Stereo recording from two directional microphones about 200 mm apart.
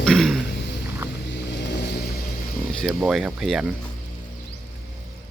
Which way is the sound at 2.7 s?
Centre (ahead or behind).